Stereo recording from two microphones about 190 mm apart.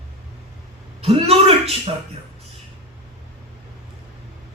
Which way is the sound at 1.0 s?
30° right (ahead or behind).